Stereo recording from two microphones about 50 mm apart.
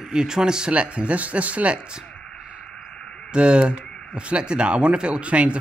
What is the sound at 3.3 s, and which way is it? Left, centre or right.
Speech, right.